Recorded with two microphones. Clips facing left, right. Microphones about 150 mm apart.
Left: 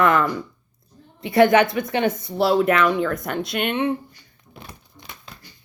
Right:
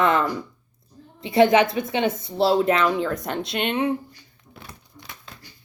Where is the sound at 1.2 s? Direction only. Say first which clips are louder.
Left 1 dB; 25° right (ahead or behind).